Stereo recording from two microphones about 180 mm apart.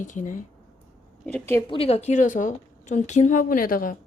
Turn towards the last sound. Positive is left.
turn(degrees=50)  # may be behind; listen again after turning